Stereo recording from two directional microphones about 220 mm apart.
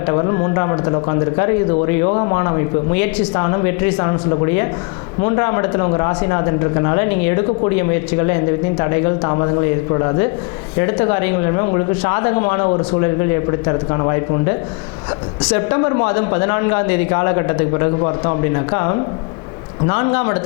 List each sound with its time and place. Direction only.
0.1 s speech: 25° left (ahead or behind)
8.8 s speech: 20° left (ahead or behind)
15.5 s speech: 20° left (ahead or behind)